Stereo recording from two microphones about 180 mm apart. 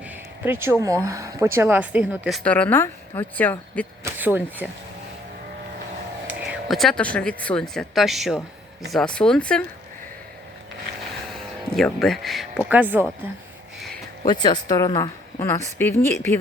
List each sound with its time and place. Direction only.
0.0 s a sound: 10° right (ahead or behind)
1.0 s speech: 20° right (ahead or behind)
2.4 s a woman's voice: 10° left (ahead or behind)
4.0 s speech: 10° right (ahead or behind)
6.2 s speech: 5° right (ahead or behind)
11.7 s speech: centre (ahead or behind)
14.3 s a woman's voice: 25° left (ahead or behind)